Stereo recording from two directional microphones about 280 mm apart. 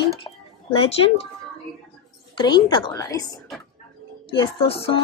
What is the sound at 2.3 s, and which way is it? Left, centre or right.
Speech, centre.